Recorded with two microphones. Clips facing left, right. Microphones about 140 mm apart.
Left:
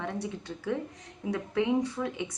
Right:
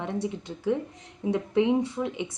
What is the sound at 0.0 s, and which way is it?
A woman's voice, 20° right (ahead or behind).